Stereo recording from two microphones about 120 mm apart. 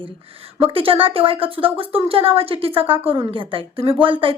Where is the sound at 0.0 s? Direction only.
50° right (ahead or behind).